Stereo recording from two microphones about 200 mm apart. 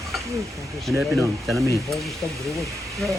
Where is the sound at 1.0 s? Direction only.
Centre (ahead or behind).